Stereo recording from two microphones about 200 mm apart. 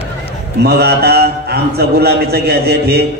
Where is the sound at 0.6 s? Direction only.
55° right (ahead or behind).